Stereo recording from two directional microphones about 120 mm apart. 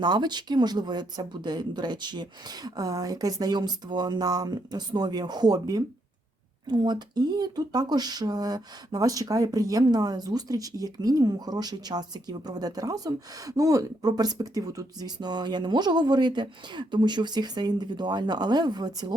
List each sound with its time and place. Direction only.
0.0 s speech: 35° right (ahead or behind)